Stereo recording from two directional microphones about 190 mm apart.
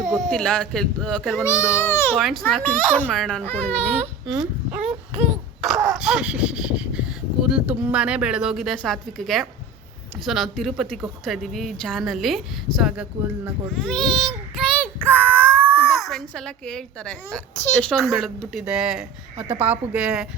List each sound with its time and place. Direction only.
0.0 s speech: centre (ahead or behind)
1.5 s a child's voice: 15° left (ahead or behind)
2.1 s speech: centre (ahead or behind)
4.8 s a sound: 35° right (ahead or behind)
5.6 s a child's voice: centre (ahead or behind)
15.4 s speech: 5° right (ahead or behind)